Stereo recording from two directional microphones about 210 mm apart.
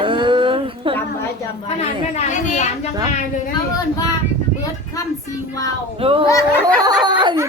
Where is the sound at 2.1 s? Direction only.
35° left (ahead or behind).